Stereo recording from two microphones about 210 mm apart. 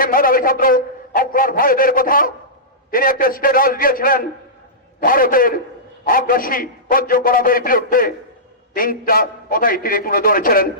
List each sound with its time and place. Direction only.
0.0 s a man's voice: 40° left (ahead or behind)